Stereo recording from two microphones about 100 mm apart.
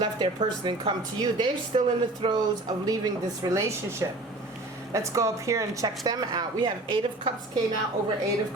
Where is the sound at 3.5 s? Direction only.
25° right (ahead or behind); by 7.0 s 45° right (ahead or behind).